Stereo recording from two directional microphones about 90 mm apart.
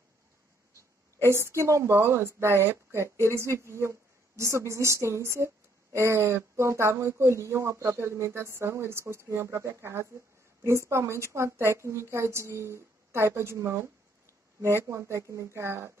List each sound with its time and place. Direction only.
1.3 s a woman's voice: 30° right (ahead or behind)